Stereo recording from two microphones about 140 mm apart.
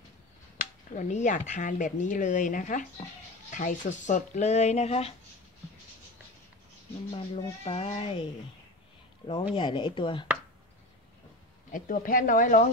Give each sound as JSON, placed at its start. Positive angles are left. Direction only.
{"t": 0.6, "sound": "speech", "side_deg": 60}
{"t": 7.2, "sound": "speech", "side_deg": 40}
{"t": 9.3, "sound": "speech", "side_deg": 35}
{"t": 11.7, "sound": "speech", "side_deg": 80}